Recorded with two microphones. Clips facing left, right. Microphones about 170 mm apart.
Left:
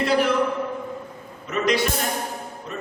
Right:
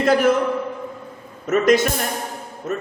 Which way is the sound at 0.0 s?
45° right (ahead or behind).